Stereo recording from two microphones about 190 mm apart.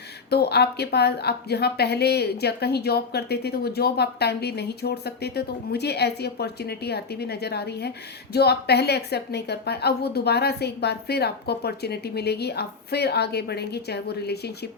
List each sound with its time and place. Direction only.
0.3 s a woman's voice: 60° left (ahead or behind)